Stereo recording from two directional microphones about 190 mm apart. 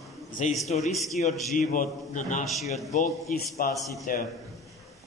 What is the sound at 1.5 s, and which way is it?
Speech, 45° left (ahead or behind).